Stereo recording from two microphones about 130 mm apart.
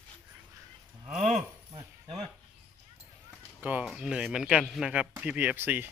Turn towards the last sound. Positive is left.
turn(degrees=-15)  # may be behind; listen again after turning